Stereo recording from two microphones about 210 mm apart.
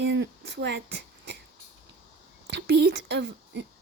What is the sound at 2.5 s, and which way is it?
Speech, 50° right (ahead or behind).